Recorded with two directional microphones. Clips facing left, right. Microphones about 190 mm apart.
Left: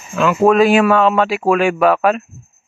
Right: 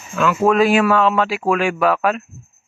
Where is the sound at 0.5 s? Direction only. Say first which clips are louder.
Left 3 dB; 20° left (ahead or behind).